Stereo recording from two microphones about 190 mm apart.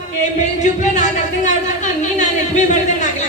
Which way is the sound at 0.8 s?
40° left (ahead or behind).